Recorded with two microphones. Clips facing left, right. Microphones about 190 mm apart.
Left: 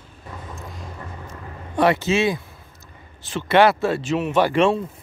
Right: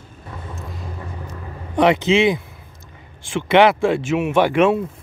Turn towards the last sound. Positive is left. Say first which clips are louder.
# right 2 dB
turn(degrees=-10)  # may be behind; listen again after turning